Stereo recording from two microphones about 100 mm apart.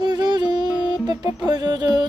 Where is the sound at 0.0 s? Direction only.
40° right (ahead or behind).